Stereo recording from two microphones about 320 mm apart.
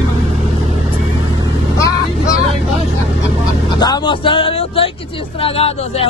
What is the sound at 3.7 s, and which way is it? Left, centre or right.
Speech, centre.